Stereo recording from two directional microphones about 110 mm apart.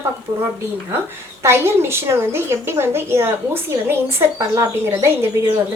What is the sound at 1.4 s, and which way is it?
A woman's voice, 25° right (ahead or behind).